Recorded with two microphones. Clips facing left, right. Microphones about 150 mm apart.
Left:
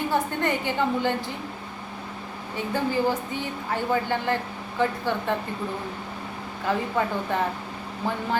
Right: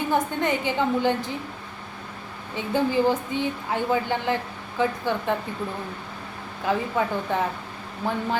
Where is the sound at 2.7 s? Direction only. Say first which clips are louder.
Right 3 dB; 20° right (ahead or behind).